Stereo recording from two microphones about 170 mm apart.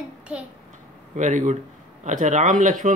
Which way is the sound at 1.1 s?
45° right (ahead or behind).